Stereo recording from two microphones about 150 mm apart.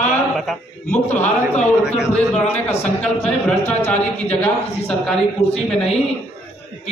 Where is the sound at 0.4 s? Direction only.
5° left (ahead or behind).